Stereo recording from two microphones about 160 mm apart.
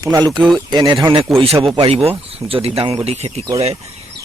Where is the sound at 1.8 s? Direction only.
40° right (ahead or behind).